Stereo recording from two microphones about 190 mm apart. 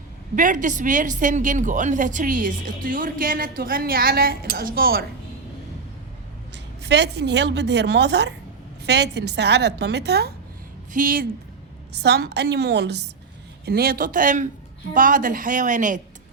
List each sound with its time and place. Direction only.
0.3 s a woman's voice: 45° right (ahead or behind)
6.8 s a woman's voice: 65° right (ahead or behind)
10.9 s a woman's voice: 45° right (ahead or behind)
11.9 s a woman's voice: 60° right (ahead or behind); by 16.0 s 40° right (ahead or behind)